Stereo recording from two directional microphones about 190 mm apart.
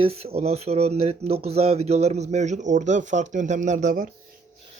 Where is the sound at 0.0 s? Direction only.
30° right (ahead or behind).